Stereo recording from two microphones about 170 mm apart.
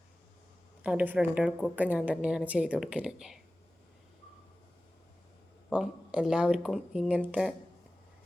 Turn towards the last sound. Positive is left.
turn(degrees=-5)  # may be behind; listen again after turning